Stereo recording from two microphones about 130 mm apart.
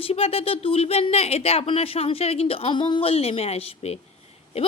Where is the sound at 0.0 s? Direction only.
50° left (ahead or behind).